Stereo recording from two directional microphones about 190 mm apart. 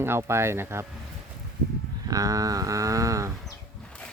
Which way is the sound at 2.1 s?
20° right (ahead or behind).